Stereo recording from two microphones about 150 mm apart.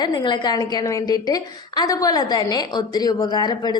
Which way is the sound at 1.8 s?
25° left (ahead or behind).